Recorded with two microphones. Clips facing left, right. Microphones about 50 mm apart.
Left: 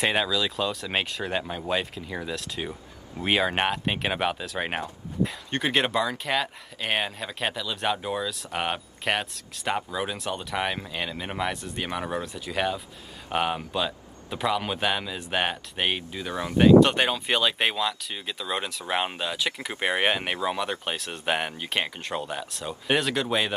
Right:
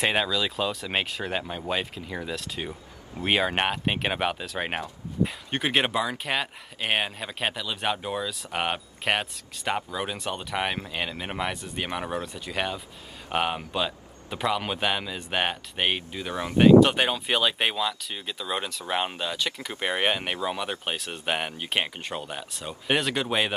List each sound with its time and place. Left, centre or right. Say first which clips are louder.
0.0 s speech: even; centre
16.3 s speech: even; right
16.8 s speech: even; centre